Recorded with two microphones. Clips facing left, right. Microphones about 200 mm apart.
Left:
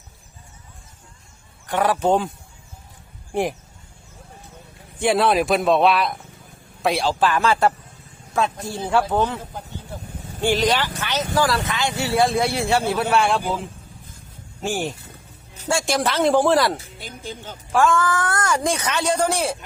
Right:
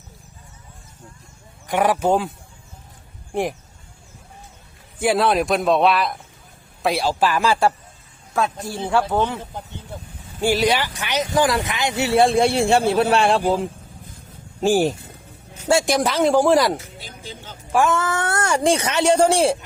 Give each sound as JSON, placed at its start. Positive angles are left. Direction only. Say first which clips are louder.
{"t": 1.6, "sound": "speech", "louder": "right 1 dB", "side_deg": -15}
{"t": 4.9, "sound": "a man's voice", "louder": "even", "side_deg": 0}
{"t": 10.4, "sound": "speech", "louder": "right 1 dB", "side_deg": -10}
{"t": 14.6, "sound": "speech", "louder": "right 8 dB", "side_deg": -35}
{"t": 15.9, "sound": "a man's voice", "louder": "right 1 dB", "side_deg": -15}
{"t": 17.0, "sound": "speech", "louder": "left 3 dB", "side_deg": 50}
{"t": 17.7, "sound": "speech", "louder": "even", "side_deg": -20}